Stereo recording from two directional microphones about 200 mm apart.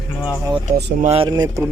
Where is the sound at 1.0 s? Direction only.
30° right (ahead or behind).